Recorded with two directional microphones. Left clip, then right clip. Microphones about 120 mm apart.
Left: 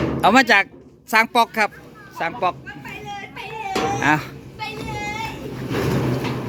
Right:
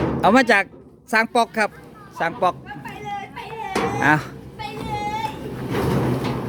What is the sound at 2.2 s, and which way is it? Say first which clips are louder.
Speech: right 1 dB; 30° right (ahead or behind).